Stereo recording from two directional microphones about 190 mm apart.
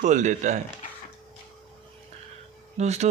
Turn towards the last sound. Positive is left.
turn(degrees=-35)  # may be behind; listen again after turning